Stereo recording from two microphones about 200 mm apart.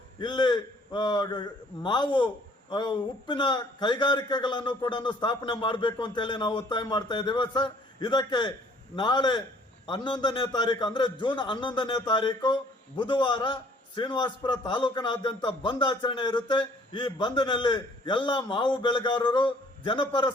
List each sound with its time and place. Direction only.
0.2 s a man's voice: 20° left (ahead or behind)